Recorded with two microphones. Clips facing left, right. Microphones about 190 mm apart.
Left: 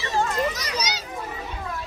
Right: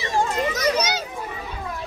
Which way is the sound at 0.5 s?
50° right (ahead or behind).